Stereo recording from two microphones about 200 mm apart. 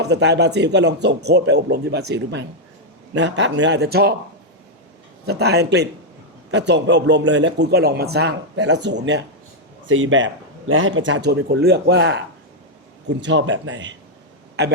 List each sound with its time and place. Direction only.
0.0 s a man's voice: 60° right (ahead or behind)
5.2 s a man's voice: 55° right (ahead or behind)
9.8 s speech: 75° right (ahead or behind); by 12.2 s 60° right (ahead or behind)
13.2 s speech: 65° right (ahead or behind)